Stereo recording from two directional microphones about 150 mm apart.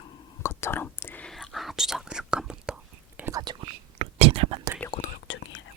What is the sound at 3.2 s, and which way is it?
Whispering, 25° right (ahead or behind).